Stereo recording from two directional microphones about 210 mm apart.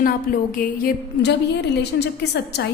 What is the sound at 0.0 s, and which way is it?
A woman's voice, 45° left (ahead or behind).